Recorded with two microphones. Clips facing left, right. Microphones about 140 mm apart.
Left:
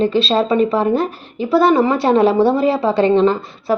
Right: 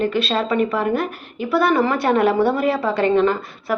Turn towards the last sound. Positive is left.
turn(degrees=30)  # may be behind; listen again after turning